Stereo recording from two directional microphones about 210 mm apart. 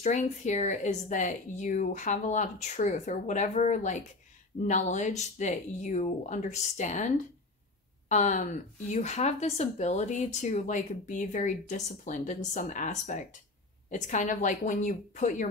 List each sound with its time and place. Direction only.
0.0 s speech: 35° left (ahead or behind)
8.1 s speech: 35° left (ahead or behind)